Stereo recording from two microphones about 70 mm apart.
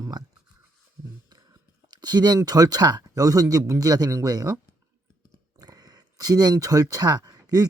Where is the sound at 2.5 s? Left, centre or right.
Right.